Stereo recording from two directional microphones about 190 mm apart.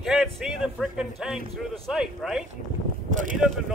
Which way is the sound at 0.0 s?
Centre (ahead or behind).